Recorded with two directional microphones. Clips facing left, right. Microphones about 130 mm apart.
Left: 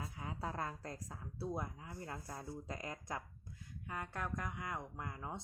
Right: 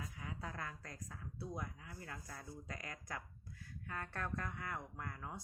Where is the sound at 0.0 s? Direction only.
30° left (ahead or behind).